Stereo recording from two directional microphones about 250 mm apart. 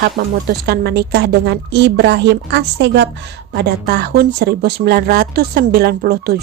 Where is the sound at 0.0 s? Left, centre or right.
Right.